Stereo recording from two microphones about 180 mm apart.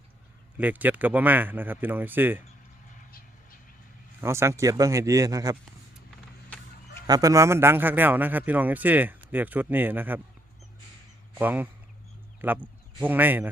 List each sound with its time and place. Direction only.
0.5 s a man's voice: 10° right (ahead or behind)
4.2 s a man's voice: 15° right (ahead or behind)
7.1 s a man's voice: 20° right (ahead or behind)
11.3 s a man's voice: 10° right (ahead or behind)